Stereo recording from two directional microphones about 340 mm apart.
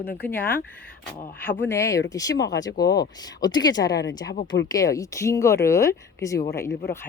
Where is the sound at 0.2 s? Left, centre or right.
Centre.